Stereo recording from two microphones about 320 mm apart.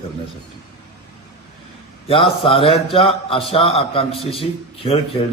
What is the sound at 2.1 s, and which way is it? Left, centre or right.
A man's voice, centre.